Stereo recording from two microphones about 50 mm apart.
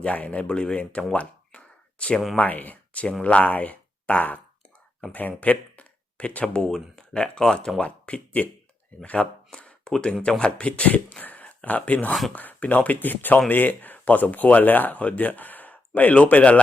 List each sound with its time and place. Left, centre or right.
0.0 s speech: left
1.1 s a sound: left
2.3 s speech: left
6.7 s speech: centre; by 9.1 s left
9.5 s a sound: centre
9.9 s speech: centre